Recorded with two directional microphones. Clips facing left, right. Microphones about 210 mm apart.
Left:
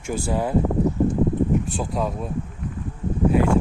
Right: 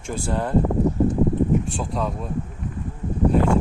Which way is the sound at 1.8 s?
5° left (ahead or behind).